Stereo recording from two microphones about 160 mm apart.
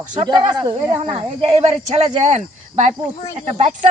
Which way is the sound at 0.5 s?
30° right (ahead or behind).